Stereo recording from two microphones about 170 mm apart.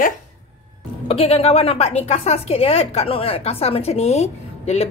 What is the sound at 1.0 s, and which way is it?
A woman's voice, 35° left (ahead or behind).